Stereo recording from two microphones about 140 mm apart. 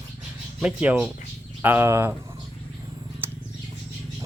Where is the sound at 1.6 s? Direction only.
15° right (ahead or behind).